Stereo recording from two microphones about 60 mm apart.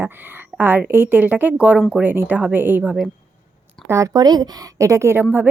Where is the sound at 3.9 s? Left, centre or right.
Right.